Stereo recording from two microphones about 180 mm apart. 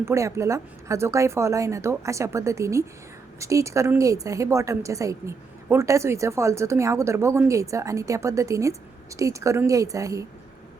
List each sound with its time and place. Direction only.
0.0 s a woman's voice: 15° right (ahead or behind)